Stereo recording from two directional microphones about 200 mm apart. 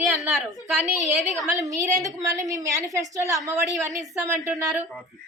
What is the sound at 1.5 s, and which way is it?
A woman's voice, 15° right (ahead or behind).